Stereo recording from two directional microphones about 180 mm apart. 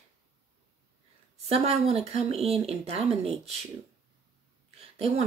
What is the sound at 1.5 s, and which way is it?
Speech, 35° right (ahead or behind).